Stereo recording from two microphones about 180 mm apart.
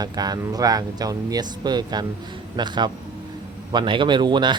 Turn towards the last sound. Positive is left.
turn(degrees=-25)  # may be behind; listen again after turning